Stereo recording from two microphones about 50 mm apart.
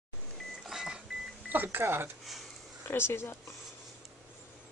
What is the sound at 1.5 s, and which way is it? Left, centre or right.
Speech, right.